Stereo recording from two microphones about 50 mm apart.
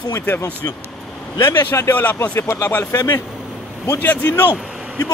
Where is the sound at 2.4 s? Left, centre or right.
Left.